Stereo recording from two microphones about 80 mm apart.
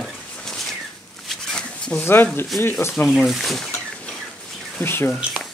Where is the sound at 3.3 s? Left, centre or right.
Centre.